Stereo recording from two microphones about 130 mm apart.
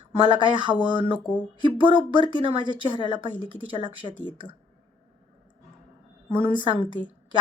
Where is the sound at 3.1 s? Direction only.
35° right (ahead or behind).